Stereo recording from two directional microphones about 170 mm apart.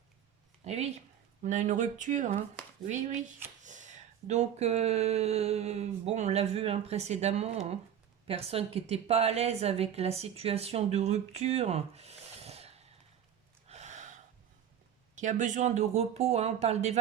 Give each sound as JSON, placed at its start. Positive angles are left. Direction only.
{"t": 0.6, "sound": "a woman's voice", "side_deg": -40}
{"t": 13.7, "sound": "gasp", "side_deg": -40}
{"t": 15.2, "sound": "a woman's voice", "side_deg": -45}